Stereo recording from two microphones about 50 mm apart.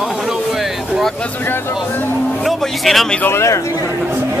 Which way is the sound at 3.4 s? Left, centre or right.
Left.